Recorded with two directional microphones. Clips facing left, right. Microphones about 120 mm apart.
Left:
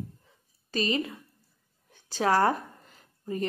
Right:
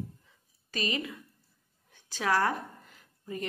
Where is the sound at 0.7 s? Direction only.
30° left (ahead or behind).